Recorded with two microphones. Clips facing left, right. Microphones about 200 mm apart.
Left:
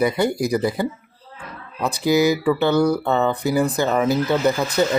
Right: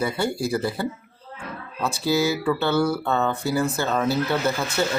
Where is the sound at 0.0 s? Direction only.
15° left (ahead or behind).